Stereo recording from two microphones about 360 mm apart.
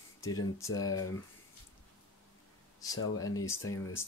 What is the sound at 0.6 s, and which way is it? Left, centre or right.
Speech, left.